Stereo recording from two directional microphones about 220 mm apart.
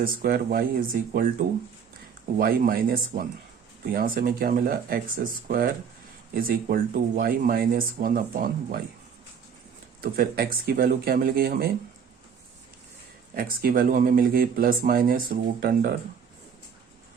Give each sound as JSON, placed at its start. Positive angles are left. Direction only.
{"t": 0.0, "sound": "speech", "side_deg": -40}
{"t": 10.0, "sound": "speech", "side_deg": -40}
{"t": 13.3, "sound": "speech", "side_deg": -40}